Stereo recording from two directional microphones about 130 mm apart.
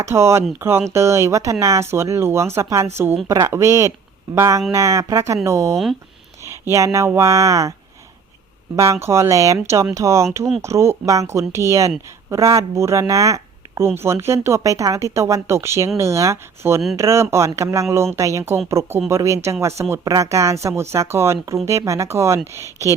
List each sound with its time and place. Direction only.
0.0 s a woman's voice: 20° right (ahead or behind)
5.7 s speech: centre (ahead or behind)
6.4 s speech: 20° right (ahead or behind)
8.7 s a woman's voice: 25° right (ahead or behind)